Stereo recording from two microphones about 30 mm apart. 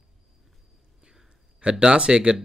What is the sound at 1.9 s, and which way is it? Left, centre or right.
Speech, right.